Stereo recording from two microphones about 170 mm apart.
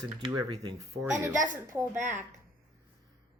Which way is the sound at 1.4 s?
50° right (ahead or behind).